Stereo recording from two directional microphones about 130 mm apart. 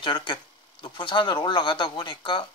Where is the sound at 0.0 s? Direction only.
40° left (ahead or behind).